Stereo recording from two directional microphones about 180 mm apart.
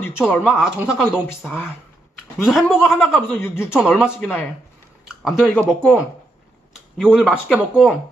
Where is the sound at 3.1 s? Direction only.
10° left (ahead or behind).